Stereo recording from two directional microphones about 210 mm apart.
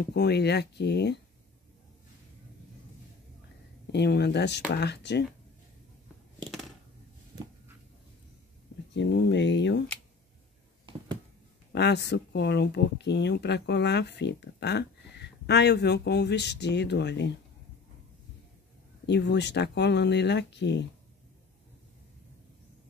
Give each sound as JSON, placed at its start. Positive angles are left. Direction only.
{"t": 0.1, "sound": "speech", "side_deg": 50}
{"t": 3.9, "sound": "speech", "side_deg": 55}
{"t": 8.9, "sound": "speech", "side_deg": 55}
{"t": 11.7, "sound": "speech", "side_deg": 55}
{"t": 19.0, "sound": "speech", "side_deg": 55}